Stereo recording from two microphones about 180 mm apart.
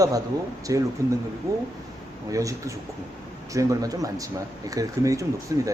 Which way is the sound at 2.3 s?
20° right (ahead or behind).